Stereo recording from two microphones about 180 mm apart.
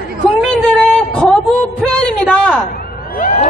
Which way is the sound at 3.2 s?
40° left (ahead or behind).